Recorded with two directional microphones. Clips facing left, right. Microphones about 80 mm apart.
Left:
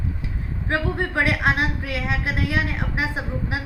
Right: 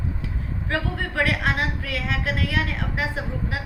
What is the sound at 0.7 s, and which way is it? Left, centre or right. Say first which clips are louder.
A woman's voice: left 3 dB; left.